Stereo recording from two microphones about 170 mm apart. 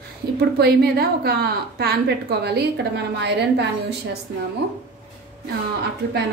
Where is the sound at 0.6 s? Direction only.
65° right (ahead or behind); by 3.9 s 85° right.